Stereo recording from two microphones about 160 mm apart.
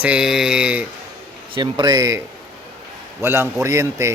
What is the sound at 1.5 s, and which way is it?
Speech, 25° right (ahead or behind).